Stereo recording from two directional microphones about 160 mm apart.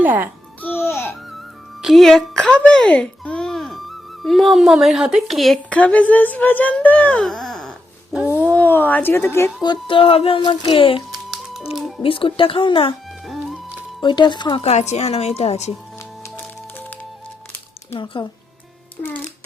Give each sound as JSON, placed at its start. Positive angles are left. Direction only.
{"t": 0.0, "sound": "a child's voice", "side_deg": -10}
{"t": 0.6, "sound": "babbling", "side_deg": 15}
{"t": 1.8, "sound": "a child's voice", "side_deg": 0}
{"t": 8.1, "sound": "a sound", "side_deg": -10}
{"t": 8.4, "sound": "speech", "side_deg": 10}
{"t": 9.6, "sound": "music", "side_deg": 30}
{"t": 11.3, "sound": "music", "side_deg": -5}
{"t": 11.7, "sound": "speech", "side_deg": 0}
{"t": 12.0, "sound": "music", "side_deg": 35}
{"t": 13.2, "sound": "music", "side_deg": 0}
{"t": 14.0, "sound": "speech", "side_deg": 30}
{"t": 14.6, "sound": "music", "side_deg": 45}
{"t": 16.2, "sound": "music", "side_deg": 10}
{"t": 18.0, "sound": "speech", "side_deg": 30}